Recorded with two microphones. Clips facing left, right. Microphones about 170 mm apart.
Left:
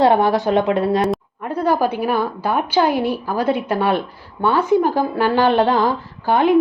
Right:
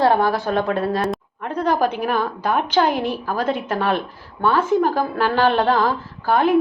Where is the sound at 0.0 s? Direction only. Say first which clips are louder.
Left 3 dB; 20° left (ahead or behind).